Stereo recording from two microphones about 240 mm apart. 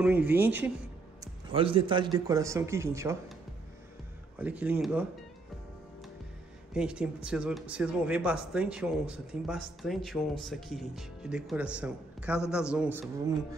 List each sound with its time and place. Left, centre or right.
0.0 s a man's voice: centre
1.2 s a man's voice: right
4.4 s speech: centre
6.7 s speech: centre